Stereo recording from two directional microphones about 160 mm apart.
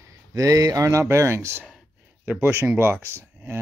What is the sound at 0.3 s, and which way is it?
Speech, 20° right (ahead or behind).